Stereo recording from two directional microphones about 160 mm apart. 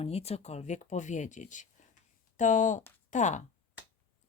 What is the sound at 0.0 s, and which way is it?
Speech, 40° left (ahead or behind).